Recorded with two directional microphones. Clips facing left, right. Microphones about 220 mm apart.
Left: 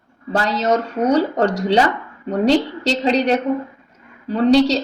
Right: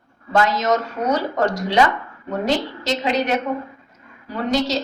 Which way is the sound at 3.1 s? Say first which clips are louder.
Left 4 dB; 35° left (ahead or behind).